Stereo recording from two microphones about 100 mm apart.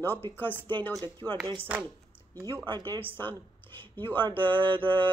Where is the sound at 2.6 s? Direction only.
55° right (ahead or behind).